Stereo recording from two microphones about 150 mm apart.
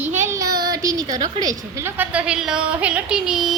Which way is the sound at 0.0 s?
15° right (ahead or behind).